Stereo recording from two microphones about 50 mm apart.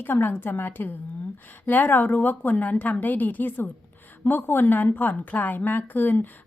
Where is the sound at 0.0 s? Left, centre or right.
Left.